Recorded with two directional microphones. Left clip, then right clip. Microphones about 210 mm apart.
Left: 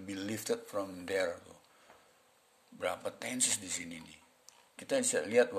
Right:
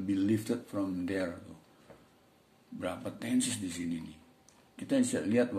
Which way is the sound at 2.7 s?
35° left (ahead or behind).